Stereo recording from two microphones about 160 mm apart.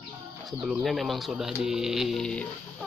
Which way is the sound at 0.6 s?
Centre (ahead or behind).